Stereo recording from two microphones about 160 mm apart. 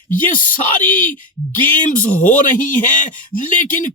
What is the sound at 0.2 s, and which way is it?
Speech, 55° left (ahead or behind).